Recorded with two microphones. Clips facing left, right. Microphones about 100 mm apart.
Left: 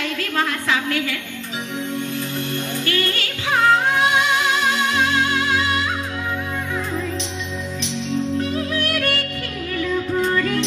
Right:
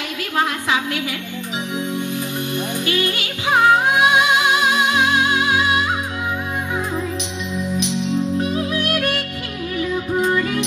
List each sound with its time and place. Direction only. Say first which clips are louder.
0.4 s a sound: right 2 dB; 15° right (ahead or behind)
2.5 s music: right 2 dB; 15° right (ahead or behind)
7.7 s music: right 3 dB; 15° right (ahead or behind)